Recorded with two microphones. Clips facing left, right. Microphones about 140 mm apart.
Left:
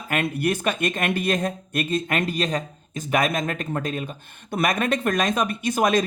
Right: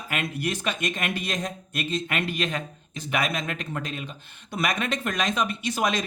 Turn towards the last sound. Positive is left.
turn(degrees=50)  # may be behind; listen again after turning